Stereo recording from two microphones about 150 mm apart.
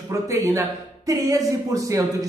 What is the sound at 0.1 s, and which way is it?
Speech, 20° right (ahead or behind).